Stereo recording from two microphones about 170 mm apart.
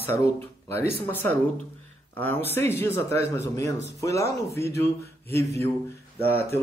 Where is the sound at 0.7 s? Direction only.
10° left (ahead or behind).